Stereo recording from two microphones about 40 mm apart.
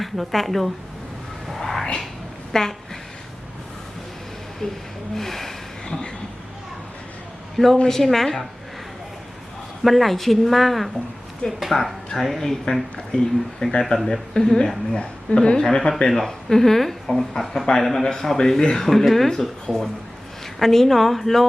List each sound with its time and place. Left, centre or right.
0.0 s a woman's voice: centre
1.5 s whispering: centre
2.5 s a sound: centre
4.6 s speech: centre
5.1 s speech: centre
7.5 s a man's voice: centre
9.8 s a woman's voice: centre
11.4 s speech: left
12.2 s speech: centre
14.9 s a woman's voice: left; by 21.4 s centre